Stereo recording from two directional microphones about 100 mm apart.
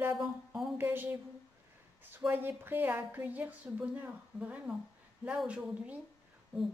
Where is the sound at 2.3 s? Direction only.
20° right (ahead or behind).